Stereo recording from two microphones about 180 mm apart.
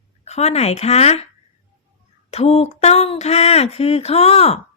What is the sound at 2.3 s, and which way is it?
Speech, 35° left (ahead or behind).